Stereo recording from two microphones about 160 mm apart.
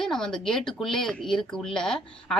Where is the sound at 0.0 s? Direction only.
5° left (ahead or behind).